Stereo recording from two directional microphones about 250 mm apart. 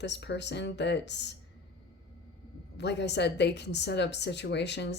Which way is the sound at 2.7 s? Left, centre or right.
Left.